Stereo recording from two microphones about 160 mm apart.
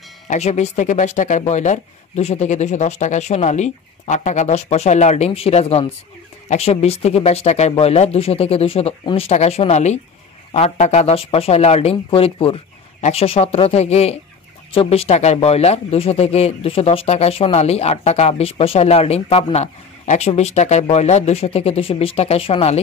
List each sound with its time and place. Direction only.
0.3 s speech: 45° left (ahead or behind)